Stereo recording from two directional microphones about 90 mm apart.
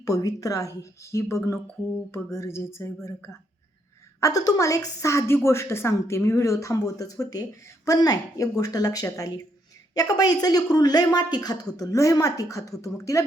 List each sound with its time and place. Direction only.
0.0 s a woman's voice: 40° left (ahead or behind)
4.2 s a woman's voice: 40° left (ahead or behind)